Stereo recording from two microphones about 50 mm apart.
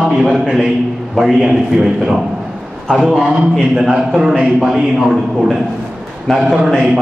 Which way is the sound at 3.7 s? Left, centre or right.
Centre.